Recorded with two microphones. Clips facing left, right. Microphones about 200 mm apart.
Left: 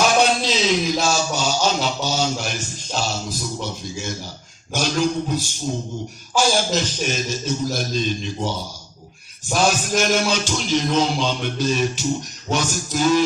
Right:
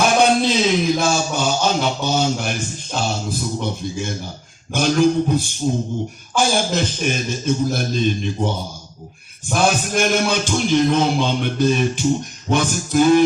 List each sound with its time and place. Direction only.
0.0 s speech: 55° right (ahead or behind)